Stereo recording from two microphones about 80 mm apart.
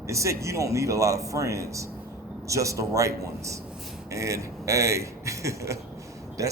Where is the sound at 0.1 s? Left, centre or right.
Right.